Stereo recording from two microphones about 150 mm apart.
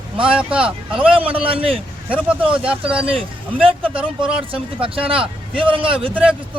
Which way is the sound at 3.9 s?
5° right (ahead or behind).